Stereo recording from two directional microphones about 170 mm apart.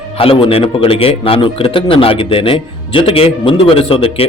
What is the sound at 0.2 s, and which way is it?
A man's voice, 35° left (ahead or behind).